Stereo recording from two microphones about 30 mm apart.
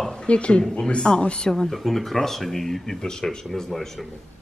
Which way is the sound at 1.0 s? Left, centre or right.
Left.